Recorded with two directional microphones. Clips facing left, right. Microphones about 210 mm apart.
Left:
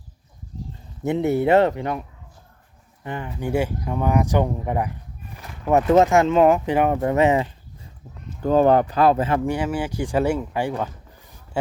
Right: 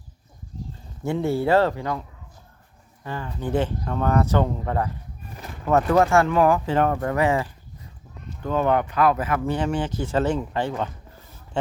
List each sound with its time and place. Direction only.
1.0 s speech: 20° left (ahead or behind)
8.4 s speech: 35° left (ahead or behind)
9.4 s speech: 10° left (ahead or behind)